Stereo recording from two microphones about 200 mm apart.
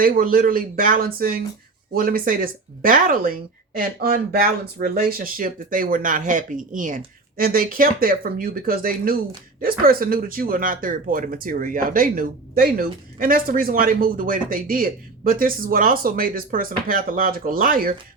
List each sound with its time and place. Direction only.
0.0 s speech: 45° right (ahead or behind)